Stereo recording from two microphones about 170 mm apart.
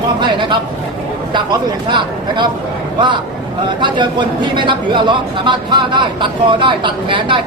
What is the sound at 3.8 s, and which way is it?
A man's voice, 25° right (ahead or behind).